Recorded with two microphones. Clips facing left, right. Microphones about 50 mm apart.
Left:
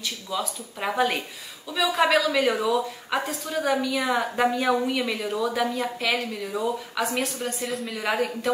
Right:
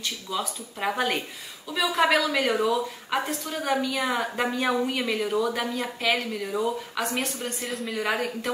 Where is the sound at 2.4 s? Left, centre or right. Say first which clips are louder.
Left 1 dB; centre.